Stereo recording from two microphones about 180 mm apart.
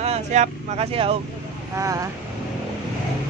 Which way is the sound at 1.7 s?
15° right (ahead or behind).